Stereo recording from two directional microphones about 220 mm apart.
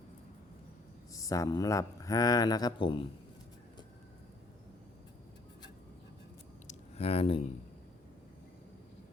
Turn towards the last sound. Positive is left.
turn(degrees=25)  # may be behind; listen again after turning